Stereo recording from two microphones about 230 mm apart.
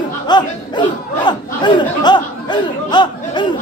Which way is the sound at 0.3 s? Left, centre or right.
Centre.